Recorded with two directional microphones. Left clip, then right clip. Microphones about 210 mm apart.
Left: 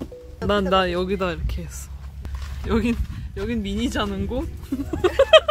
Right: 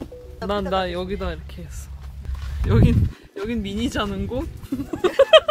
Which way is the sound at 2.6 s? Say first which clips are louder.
Right 1 dB; 5° left (ahead or behind).